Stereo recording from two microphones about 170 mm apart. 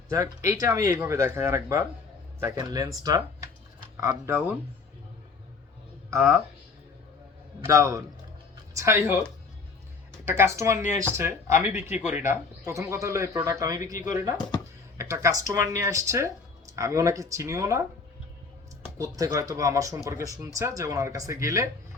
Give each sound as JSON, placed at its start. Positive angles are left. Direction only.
{"t": 0.1, "sound": "speech", "side_deg": -20}
{"t": 4.1, "sound": "speech", "side_deg": -10}
{"t": 6.1, "sound": "speech", "side_deg": -15}
{"t": 7.6, "sound": "speech", "side_deg": -20}
{"t": 10.2, "sound": "speech", "side_deg": -15}
{"t": 18.9, "sound": "speech", "side_deg": -20}